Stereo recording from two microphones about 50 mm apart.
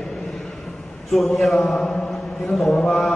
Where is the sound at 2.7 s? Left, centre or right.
Left.